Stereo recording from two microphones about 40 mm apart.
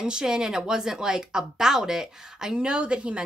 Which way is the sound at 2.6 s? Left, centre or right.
Right.